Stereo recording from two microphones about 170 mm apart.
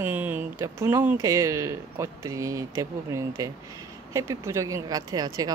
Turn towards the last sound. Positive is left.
turn(degrees=-25)  # may be behind; listen again after turning